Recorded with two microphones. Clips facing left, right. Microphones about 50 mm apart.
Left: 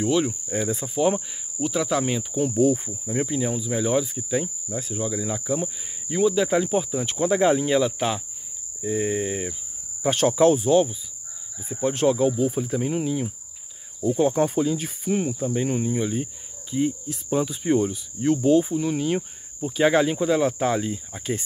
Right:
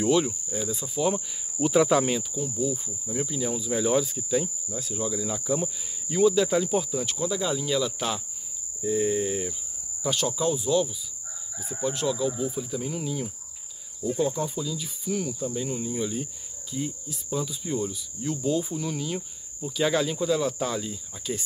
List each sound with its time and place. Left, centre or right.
0.0 s speech: centre
0.5 s speech: left
0.9 s speech: left
1.6 s speech: centre
2.3 s cricket: left
3.1 s speech: left
3.5 s speech: centre; by 7.2 s left
7.2 s speech: left
10.0 s speech: left
14.3 s speech: left
17.1 s speech: left
18.7 s speech: left